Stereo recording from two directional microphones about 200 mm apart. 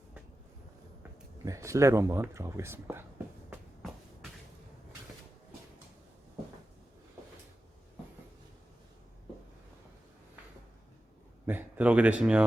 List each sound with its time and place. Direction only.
1.5 s speech: 15° right (ahead or behind)
11.4 s speech: 10° right (ahead or behind)